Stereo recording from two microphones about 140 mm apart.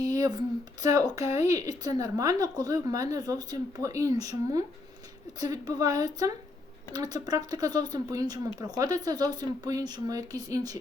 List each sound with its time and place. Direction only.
0.0 s speech: 25° right (ahead or behind)